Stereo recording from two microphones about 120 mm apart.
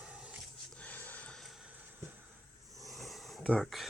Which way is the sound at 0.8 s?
15° left (ahead or behind).